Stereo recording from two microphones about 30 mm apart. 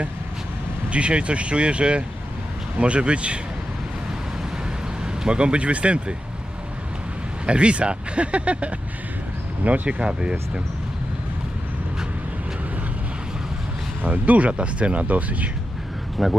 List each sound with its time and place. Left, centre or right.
0.9 s speech: right
5.0 s speech: right
7.4 s speech: right
9.6 s speech: right
10.0 s speech: right
14.0 s speech: right
16.1 s speech: centre